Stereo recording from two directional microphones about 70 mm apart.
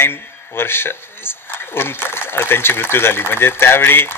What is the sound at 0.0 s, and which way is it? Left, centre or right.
Speech, left.